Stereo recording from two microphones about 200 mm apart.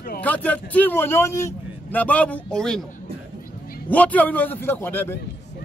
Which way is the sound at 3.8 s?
5° left (ahead or behind).